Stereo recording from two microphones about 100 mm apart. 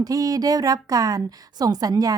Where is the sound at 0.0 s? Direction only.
35° right (ahead or behind).